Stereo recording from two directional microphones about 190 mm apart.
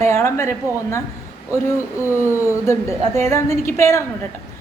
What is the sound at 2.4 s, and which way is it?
A woman's voice, 15° left (ahead or behind).